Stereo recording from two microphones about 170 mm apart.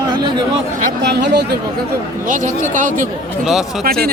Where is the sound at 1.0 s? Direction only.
90° right.